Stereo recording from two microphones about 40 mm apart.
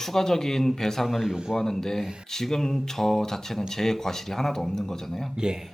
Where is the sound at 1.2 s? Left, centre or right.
Centre.